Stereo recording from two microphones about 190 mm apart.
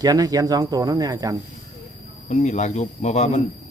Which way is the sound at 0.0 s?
20° right (ahead or behind).